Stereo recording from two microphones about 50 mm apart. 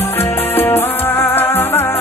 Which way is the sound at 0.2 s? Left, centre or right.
Left.